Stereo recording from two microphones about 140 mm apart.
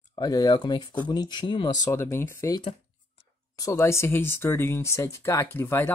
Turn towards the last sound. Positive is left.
turn(degrees=20)  # may be behind; listen again after turning